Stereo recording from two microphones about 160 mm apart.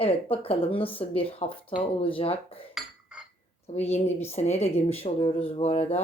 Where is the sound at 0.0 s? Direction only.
35° left (ahead or behind).